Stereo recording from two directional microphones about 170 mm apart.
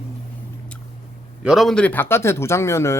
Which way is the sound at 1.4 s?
5° right (ahead or behind).